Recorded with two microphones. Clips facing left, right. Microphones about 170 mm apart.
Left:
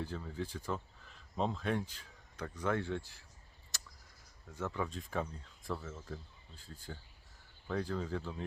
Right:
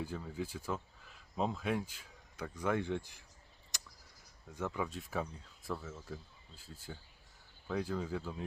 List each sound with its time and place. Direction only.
0.0 s speech: 10° right (ahead or behind)
3.7 s a sound: 15° right (ahead or behind)
4.5 s speech: 10° right (ahead or behind)